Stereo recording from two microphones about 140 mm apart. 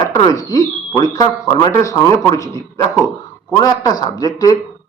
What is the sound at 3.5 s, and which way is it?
Speech, 30° left (ahead or behind).